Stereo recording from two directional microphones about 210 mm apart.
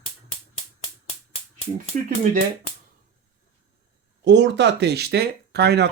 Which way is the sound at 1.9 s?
40° right (ahead or behind).